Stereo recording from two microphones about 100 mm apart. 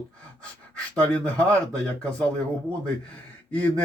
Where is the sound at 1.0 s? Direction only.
15° left (ahead or behind).